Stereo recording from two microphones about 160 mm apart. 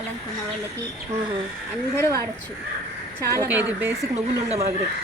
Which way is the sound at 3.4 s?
10° right (ahead or behind).